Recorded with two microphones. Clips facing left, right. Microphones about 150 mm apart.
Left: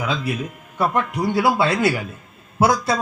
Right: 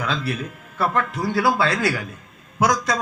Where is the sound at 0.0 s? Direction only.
15° left (ahead or behind).